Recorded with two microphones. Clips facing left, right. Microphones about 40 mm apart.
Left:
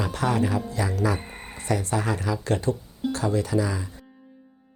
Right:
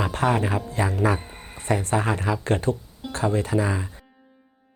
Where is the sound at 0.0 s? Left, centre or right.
Right.